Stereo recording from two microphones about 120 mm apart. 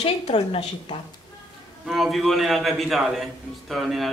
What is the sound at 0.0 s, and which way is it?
Speech, 65° left (ahead or behind).